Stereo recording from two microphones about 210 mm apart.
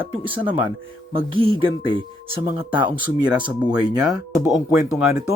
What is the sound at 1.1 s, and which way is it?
Speech, 25° right (ahead or behind).